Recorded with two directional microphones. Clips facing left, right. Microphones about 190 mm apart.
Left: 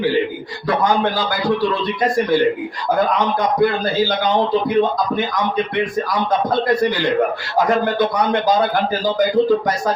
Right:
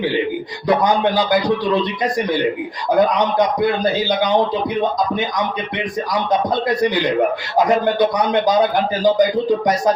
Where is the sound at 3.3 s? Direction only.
15° right (ahead or behind).